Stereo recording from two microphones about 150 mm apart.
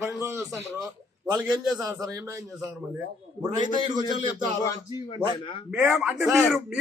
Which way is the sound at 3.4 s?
30° right (ahead or behind).